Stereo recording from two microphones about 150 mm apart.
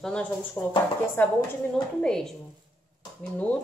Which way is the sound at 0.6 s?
20° left (ahead or behind).